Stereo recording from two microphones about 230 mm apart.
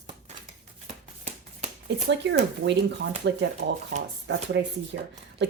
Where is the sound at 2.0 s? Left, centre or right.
Right.